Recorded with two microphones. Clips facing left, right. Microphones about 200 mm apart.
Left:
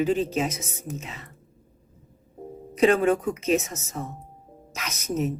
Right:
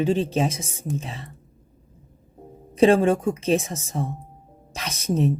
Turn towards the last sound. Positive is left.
turn(degrees=-30)  # may be behind; listen again after turning